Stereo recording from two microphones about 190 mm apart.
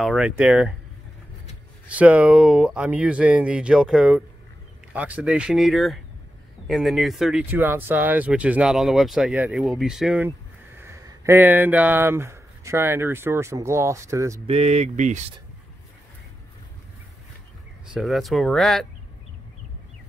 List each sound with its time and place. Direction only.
0.0 s speech: 5° right (ahead or behind)
1.9 s speech: 5° right (ahead or behind)
10.8 s speech: 15° right (ahead or behind)
14.5 s speech: 35° right (ahead or behind)
17.9 s speech: centre (ahead or behind)